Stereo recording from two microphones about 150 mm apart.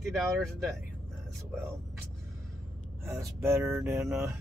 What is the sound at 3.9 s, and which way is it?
Speech, 5° right (ahead or behind).